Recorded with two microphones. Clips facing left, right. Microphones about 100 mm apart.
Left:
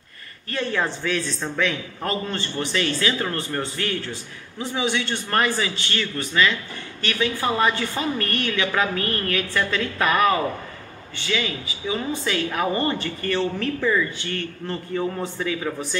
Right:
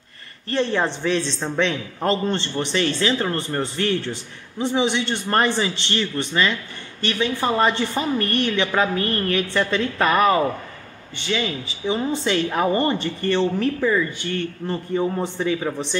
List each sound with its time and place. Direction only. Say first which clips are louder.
0.5 s speech: right 4 dB; 30° right (ahead or behind)